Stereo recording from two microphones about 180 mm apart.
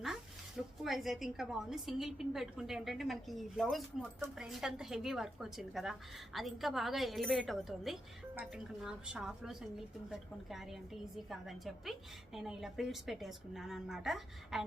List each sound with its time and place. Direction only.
0.0 s speech: centre (ahead or behind)